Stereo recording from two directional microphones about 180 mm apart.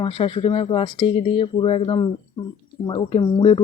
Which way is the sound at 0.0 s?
30° left (ahead or behind).